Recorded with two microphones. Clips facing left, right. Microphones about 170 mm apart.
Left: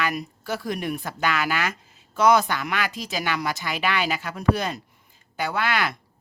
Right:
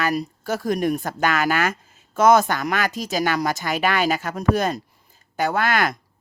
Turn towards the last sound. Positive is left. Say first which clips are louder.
# right 4 dB
turn(degrees=-45)  # may be behind; listen again after turning